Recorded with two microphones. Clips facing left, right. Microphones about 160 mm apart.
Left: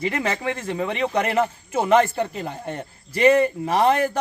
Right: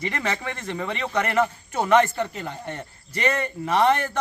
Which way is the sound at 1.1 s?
30° left (ahead or behind).